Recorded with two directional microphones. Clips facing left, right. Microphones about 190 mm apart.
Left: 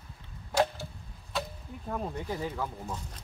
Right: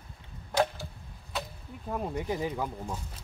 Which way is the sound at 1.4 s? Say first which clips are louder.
Left 2 dB; 10° right (ahead or behind).